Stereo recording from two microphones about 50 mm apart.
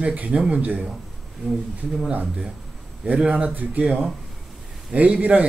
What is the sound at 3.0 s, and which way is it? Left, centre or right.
Speech, right.